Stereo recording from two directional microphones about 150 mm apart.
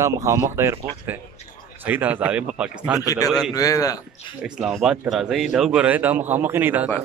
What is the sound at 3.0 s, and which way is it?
Speech, 25° left (ahead or behind).